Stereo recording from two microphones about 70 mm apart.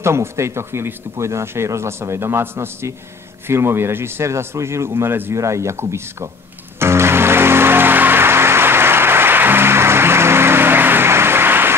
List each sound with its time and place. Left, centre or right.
0.0 s speech: right
5.3 s speech: right
6.8 s music: right